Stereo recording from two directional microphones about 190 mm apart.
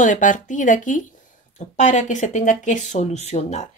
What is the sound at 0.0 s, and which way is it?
Speech, 45° left (ahead or behind).